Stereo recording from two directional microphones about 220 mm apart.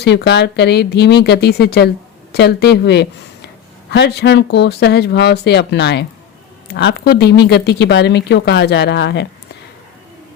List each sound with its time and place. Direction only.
0.0 s speech: 50° left (ahead or behind)